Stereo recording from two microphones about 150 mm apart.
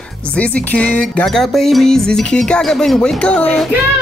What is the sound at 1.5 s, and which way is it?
A child's voice, centre (ahead or behind).